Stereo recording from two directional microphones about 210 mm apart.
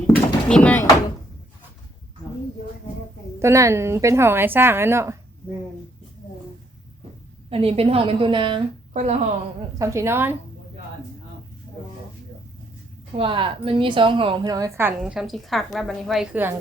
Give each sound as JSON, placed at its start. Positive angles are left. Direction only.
{"t": 0.4, "sound": "speech", "side_deg": 5}
{"t": 3.4, "sound": "a woman's voice", "side_deg": -15}
{"t": 7.5, "sound": "a woman's voice", "side_deg": -30}
{"t": 8.9, "sound": "a woman's voice", "side_deg": -35}
{"t": 9.7, "sound": "a woman's voice", "side_deg": -15}
{"t": 13.1, "sound": "a woman's voice", "side_deg": -25}